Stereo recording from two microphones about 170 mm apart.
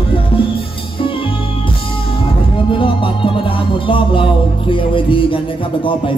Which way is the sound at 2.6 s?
30° left (ahead or behind).